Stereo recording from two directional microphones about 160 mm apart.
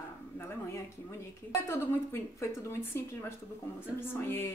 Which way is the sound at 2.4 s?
15° left (ahead or behind).